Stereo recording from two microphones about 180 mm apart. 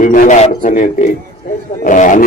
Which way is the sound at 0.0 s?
45° left (ahead or behind).